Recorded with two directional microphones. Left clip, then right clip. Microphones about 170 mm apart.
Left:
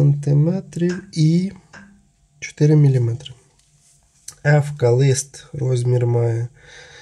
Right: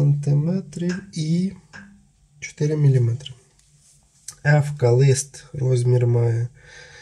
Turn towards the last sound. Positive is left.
turn(degrees=35)  # may be behind; listen again after turning